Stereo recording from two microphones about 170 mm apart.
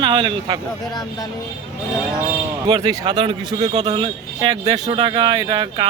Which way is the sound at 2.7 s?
30° right (ahead or behind).